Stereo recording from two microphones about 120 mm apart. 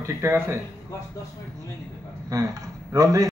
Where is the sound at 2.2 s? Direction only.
30° right (ahead or behind).